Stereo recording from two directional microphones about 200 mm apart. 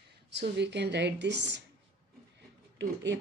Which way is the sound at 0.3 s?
60° right (ahead or behind).